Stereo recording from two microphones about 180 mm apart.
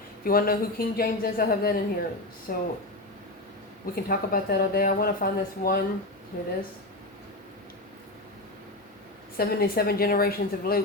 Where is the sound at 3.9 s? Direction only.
55° left (ahead or behind).